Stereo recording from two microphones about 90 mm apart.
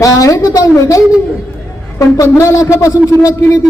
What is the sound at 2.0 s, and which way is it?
Speech, 35° left (ahead or behind).